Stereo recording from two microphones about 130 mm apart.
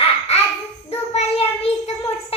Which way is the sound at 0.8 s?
55° left (ahead or behind).